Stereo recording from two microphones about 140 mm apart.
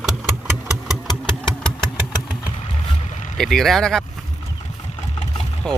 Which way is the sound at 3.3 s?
Centre (ahead or behind).